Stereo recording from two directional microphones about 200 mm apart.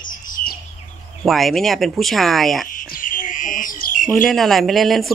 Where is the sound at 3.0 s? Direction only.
40° left (ahead or behind).